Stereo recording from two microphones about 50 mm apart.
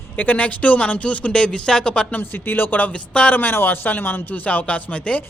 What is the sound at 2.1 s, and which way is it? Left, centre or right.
Speech, left.